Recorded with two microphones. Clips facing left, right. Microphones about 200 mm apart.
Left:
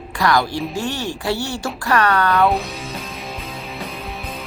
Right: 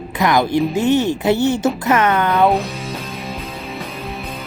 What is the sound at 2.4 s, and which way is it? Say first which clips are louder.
Music: right 3 dB; centre (ahead or behind).